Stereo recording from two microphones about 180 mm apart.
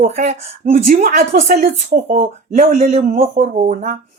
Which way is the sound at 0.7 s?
50° right (ahead or behind).